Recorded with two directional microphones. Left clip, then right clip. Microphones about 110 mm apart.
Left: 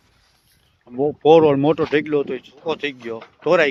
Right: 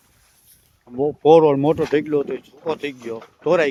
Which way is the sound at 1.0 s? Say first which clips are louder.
Even; 20° right (ahead or behind).